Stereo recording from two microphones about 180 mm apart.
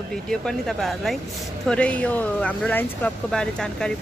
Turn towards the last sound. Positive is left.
turn(degrees=5)  # may be behind; listen again after turning